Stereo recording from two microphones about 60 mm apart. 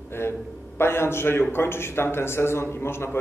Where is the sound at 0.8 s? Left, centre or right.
Left.